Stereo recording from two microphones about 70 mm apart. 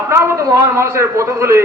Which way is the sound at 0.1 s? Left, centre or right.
Right.